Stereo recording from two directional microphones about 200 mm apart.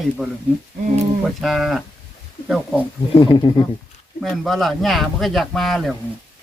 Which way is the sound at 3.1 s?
25° left (ahead or behind).